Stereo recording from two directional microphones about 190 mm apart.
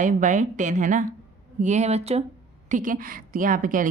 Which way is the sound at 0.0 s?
40° right (ahead or behind).